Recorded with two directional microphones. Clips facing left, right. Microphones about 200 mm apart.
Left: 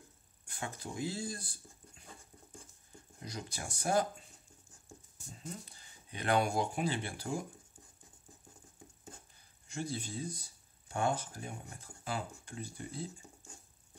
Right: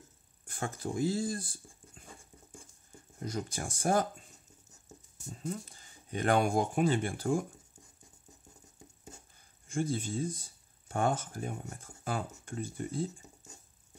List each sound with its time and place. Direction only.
0.5 s speech: 50° right (ahead or behind)
3.2 s speech: 50° right (ahead or behind)
5.4 s speech: 45° right (ahead or behind)
9.7 s speech: 50° right (ahead or behind)